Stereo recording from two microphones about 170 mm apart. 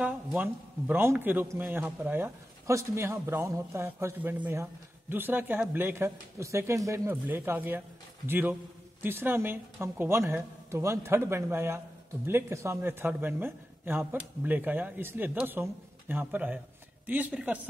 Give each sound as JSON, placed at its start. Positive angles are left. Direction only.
{"t": 0.0, "sound": "speech", "side_deg": -10}